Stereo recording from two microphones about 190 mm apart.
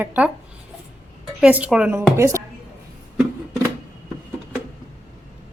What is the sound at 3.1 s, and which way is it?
Music, 10° right (ahead or behind).